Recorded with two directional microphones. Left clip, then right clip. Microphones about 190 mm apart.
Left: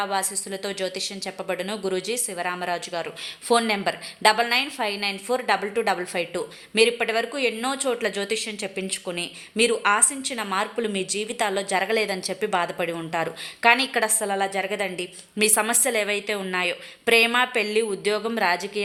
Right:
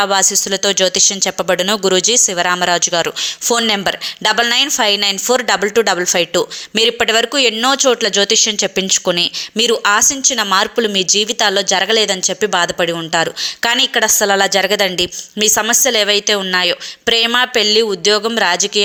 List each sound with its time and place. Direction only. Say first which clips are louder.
0.0 s speech: right 12 dB; 30° right (ahead or behind)
14.3 s speech: right 12 dB; 30° right (ahead or behind)